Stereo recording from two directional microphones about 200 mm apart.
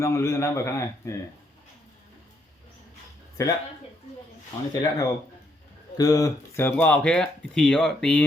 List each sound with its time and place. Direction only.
0.0 s a man's voice: 15° left (ahead or behind)
3.4 s a man's voice: 15° left (ahead or behind)
4.7 s speech: 20° left (ahead or behind)